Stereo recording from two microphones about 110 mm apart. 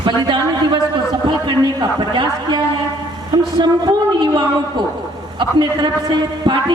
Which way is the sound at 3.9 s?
50° right (ahead or behind).